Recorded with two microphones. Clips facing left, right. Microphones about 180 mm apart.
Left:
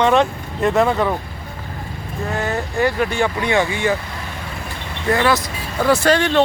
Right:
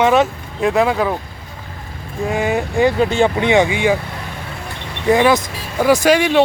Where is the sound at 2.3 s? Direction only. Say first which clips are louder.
Right 5 dB; 15° right (ahead or behind).